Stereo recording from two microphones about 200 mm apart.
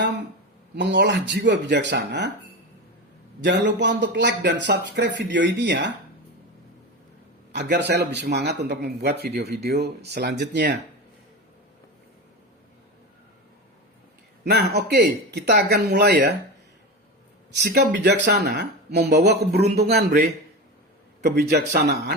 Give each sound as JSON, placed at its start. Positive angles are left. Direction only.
{"t": 0.8, "sound": "speech", "side_deg": -60}
{"t": 3.4, "sound": "speech", "side_deg": -60}
{"t": 7.5, "sound": "speech", "side_deg": -60}
{"t": 14.8, "sound": "speech", "side_deg": -55}
{"t": 17.5, "sound": "a man's voice", "side_deg": -55}